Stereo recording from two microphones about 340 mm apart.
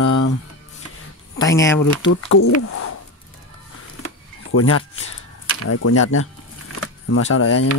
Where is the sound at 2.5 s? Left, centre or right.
Left.